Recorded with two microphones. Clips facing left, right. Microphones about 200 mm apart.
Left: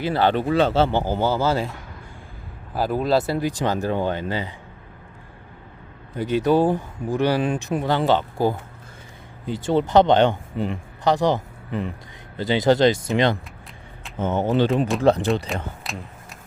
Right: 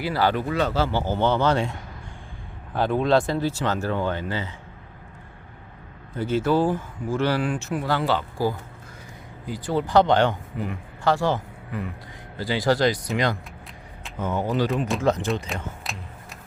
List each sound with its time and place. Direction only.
0.0 s speech: 25° left (ahead or behind); by 1.7 s 5° left (ahead or behind)
2.7 s speech: 5° left (ahead or behind)
6.1 s speech: 15° left (ahead or behind); by 15.3 s 30° left (ahead or behind)
15.8 s a sound: centre (ahead or behind)